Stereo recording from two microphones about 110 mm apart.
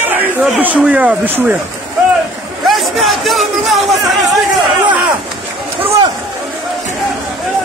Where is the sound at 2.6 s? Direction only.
Centre (ahead or behind).